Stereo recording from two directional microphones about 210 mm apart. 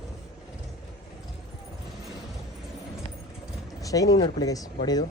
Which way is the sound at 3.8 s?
15° left (ahead or behind).